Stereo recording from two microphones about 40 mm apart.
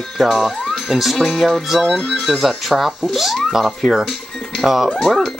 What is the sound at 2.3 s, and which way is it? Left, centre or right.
Speech, centre.